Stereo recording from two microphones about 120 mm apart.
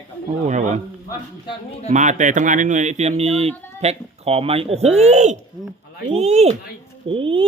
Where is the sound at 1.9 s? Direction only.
90° right; by 4.9 s 55° right (ahead or behind).